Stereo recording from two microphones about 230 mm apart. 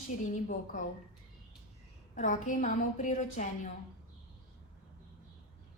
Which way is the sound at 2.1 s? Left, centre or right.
Left.